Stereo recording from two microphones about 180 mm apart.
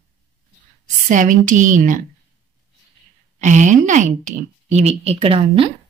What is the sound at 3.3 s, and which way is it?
Speech, 45° right (ahead or behind).